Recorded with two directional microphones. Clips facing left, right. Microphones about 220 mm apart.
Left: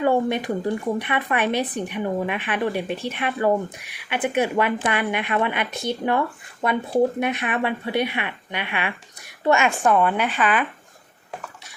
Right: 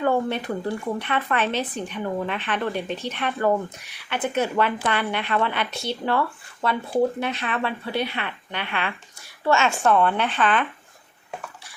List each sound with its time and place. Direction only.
0.0 s speech: 15° left (ahead or behind)